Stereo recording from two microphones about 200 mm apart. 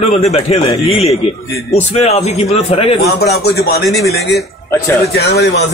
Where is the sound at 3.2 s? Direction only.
55° left (ahead or behind).